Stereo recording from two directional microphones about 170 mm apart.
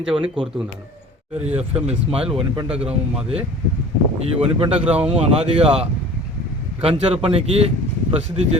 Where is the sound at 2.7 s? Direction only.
5° right (ahead or behind).